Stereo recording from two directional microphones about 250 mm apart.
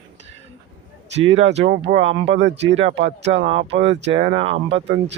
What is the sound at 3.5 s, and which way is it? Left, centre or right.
Speech, right.